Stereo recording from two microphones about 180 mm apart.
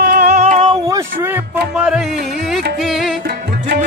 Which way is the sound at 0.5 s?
30° right (ahead or behind).